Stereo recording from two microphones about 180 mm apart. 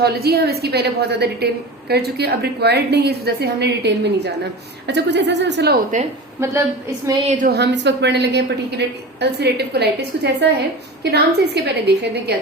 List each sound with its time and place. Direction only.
0.0 s a woman's voice: 60° right (ahead or behind)
6.4 s a woman's voice: 15° right (ahead or behind)
7.4 s a woman's voice: 65° right (ahead or behind)